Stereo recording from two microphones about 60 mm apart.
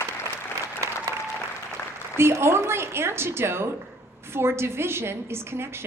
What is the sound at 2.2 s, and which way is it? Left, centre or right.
A woman's voice, right.